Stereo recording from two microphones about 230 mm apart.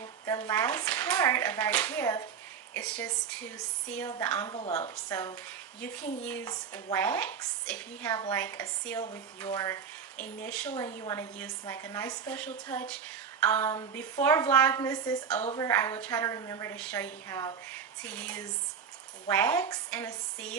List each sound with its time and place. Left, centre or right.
0.0 s speech: centre
4.5 s a woman's voice: left
5.0 s speech: centre